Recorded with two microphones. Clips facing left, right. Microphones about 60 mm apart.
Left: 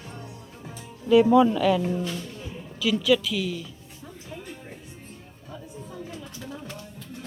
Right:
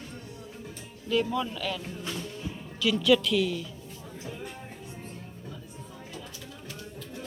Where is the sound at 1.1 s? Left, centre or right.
Centre.